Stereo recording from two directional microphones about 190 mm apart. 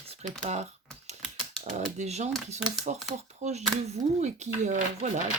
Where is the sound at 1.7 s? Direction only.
35° right (ahead or behind).